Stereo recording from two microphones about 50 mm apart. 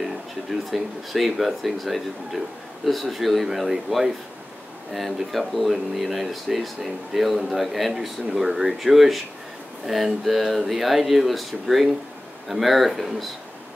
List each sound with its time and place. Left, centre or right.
0.0 s speech: centre